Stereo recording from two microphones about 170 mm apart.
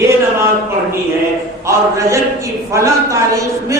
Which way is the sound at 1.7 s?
15° right (ahead or behind).